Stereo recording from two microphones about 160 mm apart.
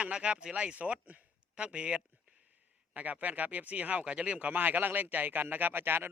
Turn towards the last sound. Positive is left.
turn(degrees=-15)  # may be behind; listen again after turning